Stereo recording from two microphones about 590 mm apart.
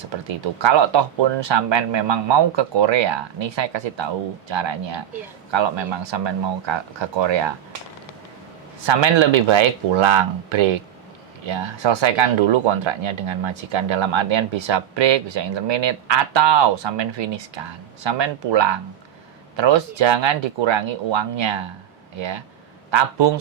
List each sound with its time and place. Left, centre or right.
0.3 s speech: right
8.9 s speech: right
22.9 s a man's voice: right